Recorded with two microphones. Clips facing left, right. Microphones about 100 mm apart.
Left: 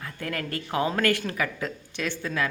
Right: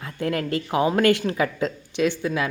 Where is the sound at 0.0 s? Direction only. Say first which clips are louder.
Right 7 dB; 20° right (ahead or behind).